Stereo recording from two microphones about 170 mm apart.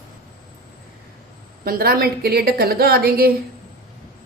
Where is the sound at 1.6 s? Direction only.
60° right (ahead or behind).